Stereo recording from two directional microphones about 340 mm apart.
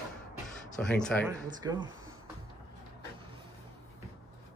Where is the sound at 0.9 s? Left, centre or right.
Centre.